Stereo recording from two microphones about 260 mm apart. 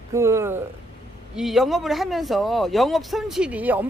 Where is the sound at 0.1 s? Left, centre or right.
Centre.